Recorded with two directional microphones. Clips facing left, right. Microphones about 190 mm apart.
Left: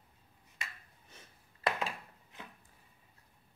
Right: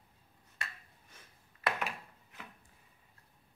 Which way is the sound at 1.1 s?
25° left (ahead or behind).